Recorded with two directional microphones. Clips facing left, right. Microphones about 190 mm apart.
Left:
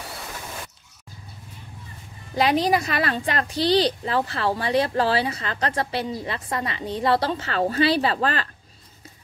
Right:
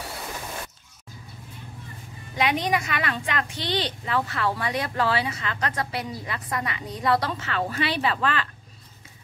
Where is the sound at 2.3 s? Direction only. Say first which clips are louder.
Left 4 dB; 35° left (ahead or behind).